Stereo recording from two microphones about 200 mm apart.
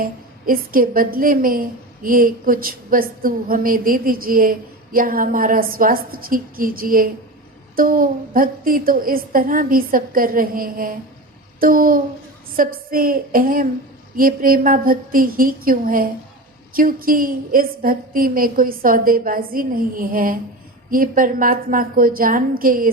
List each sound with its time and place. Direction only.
0.0 s a woman's voice: 45° right (ahead or behind)